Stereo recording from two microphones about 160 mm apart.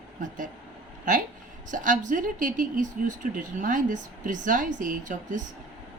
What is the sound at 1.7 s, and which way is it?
Speech, 55° right (ahead or behind).